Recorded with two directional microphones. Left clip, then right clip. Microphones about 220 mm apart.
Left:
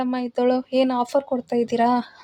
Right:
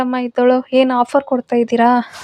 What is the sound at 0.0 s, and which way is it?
Speech, 10° right (ahead or behind).